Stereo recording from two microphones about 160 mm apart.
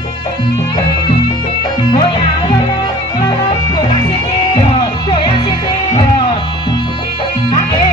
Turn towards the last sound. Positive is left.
turn(degrees=30)  # may be behind; listen again after turning